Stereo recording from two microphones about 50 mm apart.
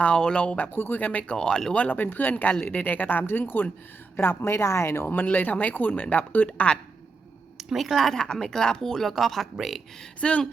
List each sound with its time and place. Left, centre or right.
0.0 s speech: centre
0.7 s speech: left
1.0 s speech: left
1.4 s speech: centre
1.7 s speech: left
2.3 s speech: left
2.8 s speech: left
5.0 s speech: left
7.8 s speech: centre
10.2 s speech: left